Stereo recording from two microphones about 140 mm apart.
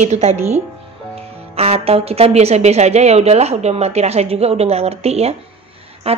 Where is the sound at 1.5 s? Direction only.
45° right (ahead or behind).